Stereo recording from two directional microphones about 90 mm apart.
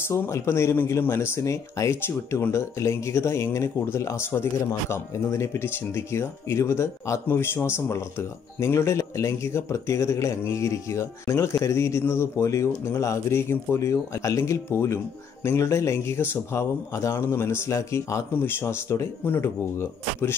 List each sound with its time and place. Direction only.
0.1 s speech: 30° left (ahead or behind)